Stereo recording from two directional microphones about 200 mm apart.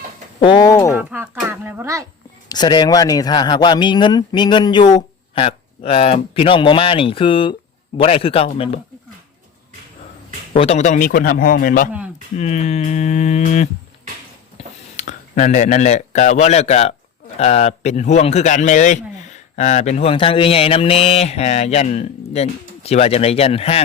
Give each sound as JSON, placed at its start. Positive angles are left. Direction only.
{"t": 0.3, "sound": "a man's voice", "side_deg": 25}
{"t": 0.9, "sound": "speech", "side_deg": -10}
{"t": 2.5, "sound": "a man's voice", "side_deg": 20}
{"t": 10.5, "sound": "a man's voice", "side_deg": 30}
{"t": 14.9, "sound": "speech", "side_deg": 35}